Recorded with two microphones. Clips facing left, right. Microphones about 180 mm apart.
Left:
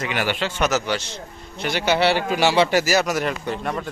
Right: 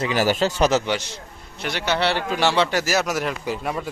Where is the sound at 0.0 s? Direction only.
35° right (ahead or behind).